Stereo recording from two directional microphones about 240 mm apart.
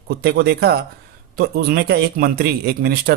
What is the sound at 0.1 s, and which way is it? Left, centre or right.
Speech, right.